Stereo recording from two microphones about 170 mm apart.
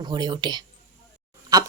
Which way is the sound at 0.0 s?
25° right (ahead or behind).